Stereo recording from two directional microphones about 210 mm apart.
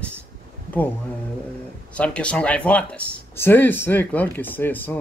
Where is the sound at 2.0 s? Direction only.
5° left (ahead or behind).